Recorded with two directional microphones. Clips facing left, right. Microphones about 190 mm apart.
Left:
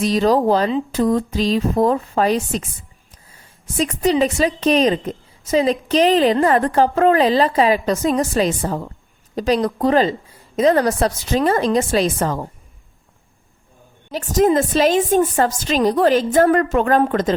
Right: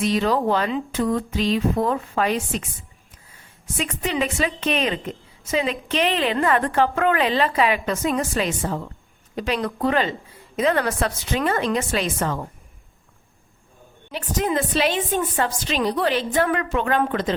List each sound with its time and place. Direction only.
0.0 s a woman's voice: 35° left (ahead or behind)
3.8 s a woman's voice: 35° left (ahead or behind)
14.1 s a woman's voice: 40° left (ahead or behind)